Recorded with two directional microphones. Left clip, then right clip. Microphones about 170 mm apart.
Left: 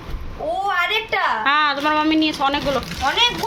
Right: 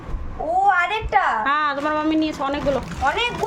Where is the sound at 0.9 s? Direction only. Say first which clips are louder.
Even; centre (ahead or behind).